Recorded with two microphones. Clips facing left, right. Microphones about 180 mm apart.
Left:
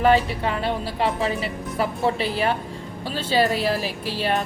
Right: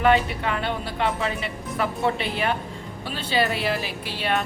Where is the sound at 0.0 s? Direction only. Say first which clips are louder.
Left 2 dB; 35° left (ahead or behind).